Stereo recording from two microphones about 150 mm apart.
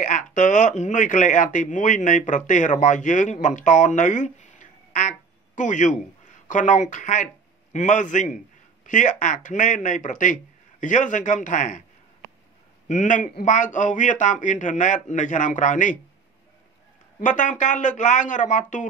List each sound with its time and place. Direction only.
0.0 s speech: 55° left (ahead or behind)
12.8 s speech: 55° left (ahead or behind)
17.2 s speech: 55° left (ahead or behind)